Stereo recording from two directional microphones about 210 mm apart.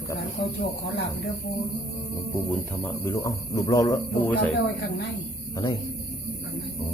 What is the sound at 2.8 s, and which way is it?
Speech, 10° left (ahead or behind).